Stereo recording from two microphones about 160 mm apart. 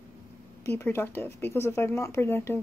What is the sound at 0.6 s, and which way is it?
Speech, 15° left (ahead or behind).